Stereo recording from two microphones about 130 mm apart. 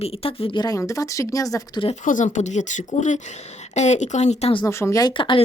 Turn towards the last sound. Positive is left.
turn(degrees=40)  # may be behind; listen again after turning